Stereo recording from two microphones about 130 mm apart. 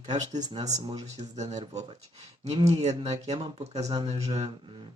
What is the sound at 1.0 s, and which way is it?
Speech, 60° right (ahead or behind).